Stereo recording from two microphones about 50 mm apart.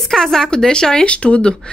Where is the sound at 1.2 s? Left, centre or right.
Left.